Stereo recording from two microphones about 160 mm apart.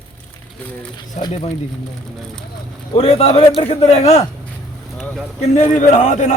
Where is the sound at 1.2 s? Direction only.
50° left (ahead or behind).